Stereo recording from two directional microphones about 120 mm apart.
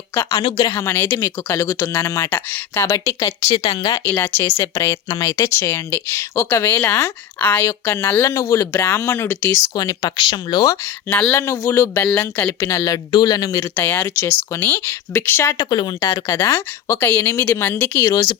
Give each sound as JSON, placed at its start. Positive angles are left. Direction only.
{"t": 0.1, "sound": "speech", "side_deg": 25}
{"t": 3.6, "sound": "speech", "side_deg": 40}
{"t": 4.1, "sound": "speech", "side_deg": 15}
{"t": 7.6, "sound": "speech", "side_deg": 25}
{"t": 11.1, "sound": "speech", "side_deg": 10}
{"t": 11.3, "sound": "speech", "side_deg": 25}
{"t": 12.0, "sound": "speech", "side_deg": 15}
{"t": 13.7, "sound": "speech", "side_deg": 15}
{"t": 15.7, "sound": "speech", "side_deg": 35}
{"t": 18.0, "sound": "speech", "side_deg": 30}